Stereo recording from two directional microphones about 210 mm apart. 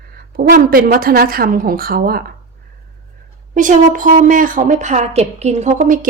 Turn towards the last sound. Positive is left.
turn(degrees=-35)  # may be behind; listen again after turning